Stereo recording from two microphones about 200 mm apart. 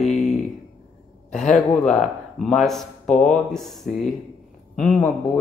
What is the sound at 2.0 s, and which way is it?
Speech, centre (ahead or behind).